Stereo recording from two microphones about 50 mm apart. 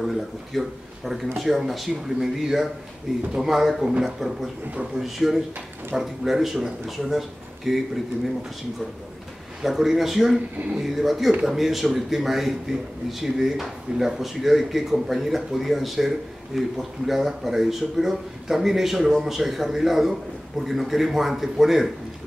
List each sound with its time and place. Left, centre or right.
0.0 s speech: centre
9.6 s speech: centre